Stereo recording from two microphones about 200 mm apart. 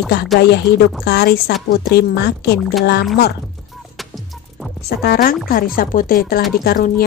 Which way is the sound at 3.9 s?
Centre (ahead or behind).